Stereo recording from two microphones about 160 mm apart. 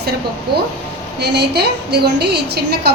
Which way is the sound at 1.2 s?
90° right.